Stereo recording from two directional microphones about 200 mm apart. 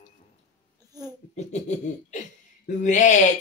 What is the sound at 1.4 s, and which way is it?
Speech, 35° left (ahead or behind).